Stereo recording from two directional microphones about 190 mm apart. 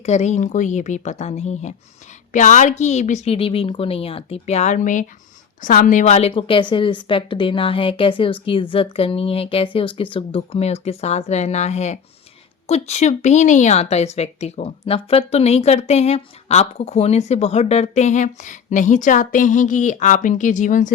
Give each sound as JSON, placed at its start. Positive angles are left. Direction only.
{"t": 0.0, "sound": "a woman's voice", "side_deg": 35}